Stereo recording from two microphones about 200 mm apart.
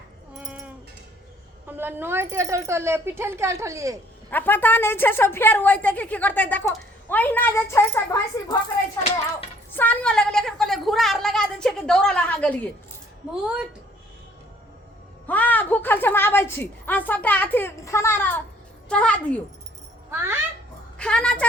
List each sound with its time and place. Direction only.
0.3 s a sound: 5° right (ahead or behind)
1.6 s speech: 10° right (ahead or behind)
4.3 s a woman's voice: 10° left (ahead or behind)
15.3 s a woman's voice: 10° left (ahead or behind)
20.1 s a child's voice: 10° right (ahead or behind)
21.0 s a woman's voice: 5° left (ahead or behind)